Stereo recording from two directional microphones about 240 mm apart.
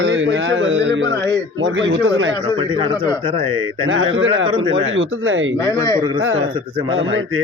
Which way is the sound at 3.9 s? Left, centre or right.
Right.